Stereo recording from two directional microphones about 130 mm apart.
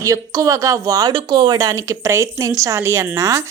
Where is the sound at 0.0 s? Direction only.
25° right (ahead or behind).